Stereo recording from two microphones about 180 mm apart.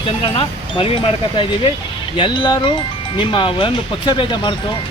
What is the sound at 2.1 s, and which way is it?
Speech, 25° left (ahead or behind).